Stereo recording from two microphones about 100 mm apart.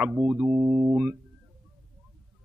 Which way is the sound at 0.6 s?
35° right (ahead or behind).